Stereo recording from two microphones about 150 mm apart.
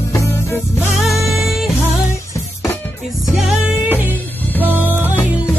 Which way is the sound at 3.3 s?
Centre (ahead or behind).